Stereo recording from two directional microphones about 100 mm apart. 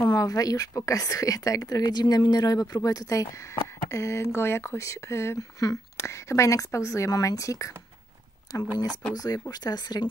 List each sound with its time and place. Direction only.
0.0 s speech: 40° left (ahead or behind)
9.1 s speech: 40° left (ahead or behind)